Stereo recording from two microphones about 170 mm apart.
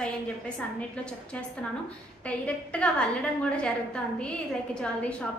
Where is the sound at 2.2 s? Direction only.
5° left (ahead or behind).